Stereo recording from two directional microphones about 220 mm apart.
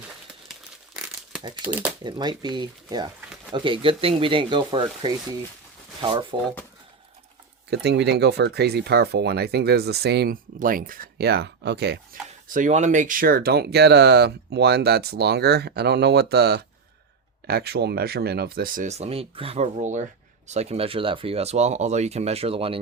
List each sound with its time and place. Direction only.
1.6 s speech: 5° right (ahead or behind)
2.0 s speech: 20° right (ahead or behind)
6.0 s speech: 20° right (ahead or behind)
7.7 s speech: 50° right (ahead or behind)
12.5 s speech: 35° right (ahead or behind)